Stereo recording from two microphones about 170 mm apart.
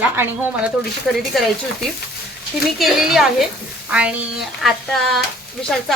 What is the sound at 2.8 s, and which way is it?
Frying, centre (ahead or behind).